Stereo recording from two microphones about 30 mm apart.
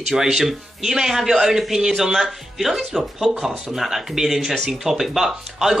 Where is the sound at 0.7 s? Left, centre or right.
Centre.